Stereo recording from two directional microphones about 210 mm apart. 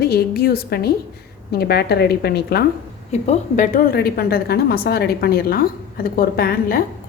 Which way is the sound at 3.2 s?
35° left (ahead or behind).